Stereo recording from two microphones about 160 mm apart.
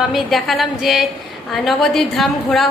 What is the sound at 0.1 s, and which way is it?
A woman's voice, centre (ahead or behind).